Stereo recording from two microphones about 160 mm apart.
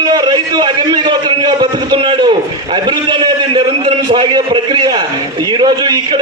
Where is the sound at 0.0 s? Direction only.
25° right (ahead or behind).